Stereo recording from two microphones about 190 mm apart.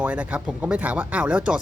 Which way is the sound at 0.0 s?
5° right (ahead or behind).